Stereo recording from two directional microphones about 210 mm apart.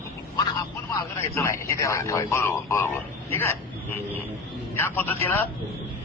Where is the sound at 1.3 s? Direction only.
15° left (ahead or behind).